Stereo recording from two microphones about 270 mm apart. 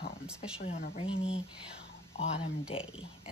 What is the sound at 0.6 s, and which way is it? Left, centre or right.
Speech, left.